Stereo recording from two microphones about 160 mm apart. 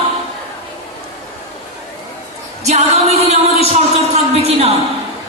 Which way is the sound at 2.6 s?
45° right (ahead or behind).